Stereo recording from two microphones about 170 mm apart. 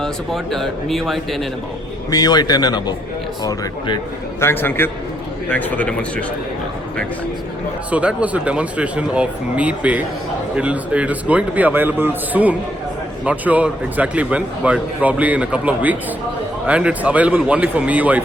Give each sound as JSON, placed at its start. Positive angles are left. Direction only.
{"t": 0.0, "sound": "speech", "side_deg": 0}
{"t": 2.0, "sound": "speech", "side_deg": 20}
{"t": 4.4, "sound": "speech", "side_deg": 10}
{"t": 7.9, "sound": "a man's voice", "side_deg": -10}